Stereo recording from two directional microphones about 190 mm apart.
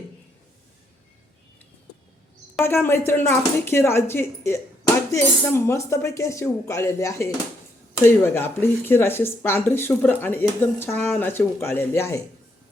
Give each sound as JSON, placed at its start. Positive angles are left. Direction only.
{"t": 2.6, "sound": "speech", "side_deg": 10}